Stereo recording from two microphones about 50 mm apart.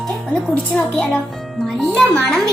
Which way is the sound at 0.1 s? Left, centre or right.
Centre.